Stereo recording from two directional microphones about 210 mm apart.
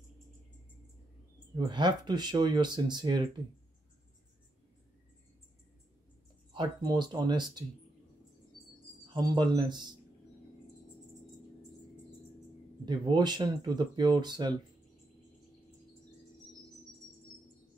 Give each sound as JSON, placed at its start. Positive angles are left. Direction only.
{"t": 1.7, "sound": "speech", "side_deg": -20}
{"t": 6.5, "sound": "speech", "side_deg": -20}
{"t": 9.1, "sound": "speech", "side_deg": -20}
{"t": 12.8, "sound": "speech", "side_deg": -20}